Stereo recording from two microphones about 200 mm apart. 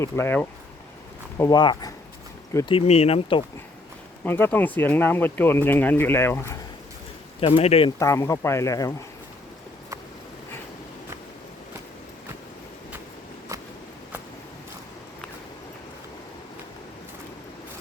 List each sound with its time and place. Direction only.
0.0 s speech: 10° left (ahead or behind)
2.7 s speech: 30° left (ahead or behind)
4.2 s speech: 10° left (ahead or behind)
7.4 s speech: 30° left (ahead or behind)
7.9 s speech: 15° left (ahead or behind)
13.5 s a sound: 15° right (ahead or behind)